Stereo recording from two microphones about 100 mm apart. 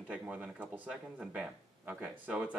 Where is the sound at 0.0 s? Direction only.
15° right (ahead or behind).